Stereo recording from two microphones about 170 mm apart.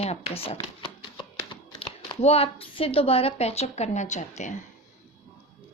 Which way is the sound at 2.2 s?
35° left (ahead or behind).